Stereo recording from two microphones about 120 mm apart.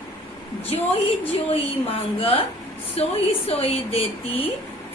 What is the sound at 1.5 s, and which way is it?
A woman's voice, 55° left (ahead or behind).